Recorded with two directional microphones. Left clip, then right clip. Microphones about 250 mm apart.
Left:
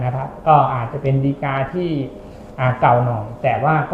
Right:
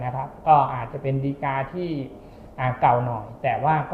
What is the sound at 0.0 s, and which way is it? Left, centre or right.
A woman's voice, left.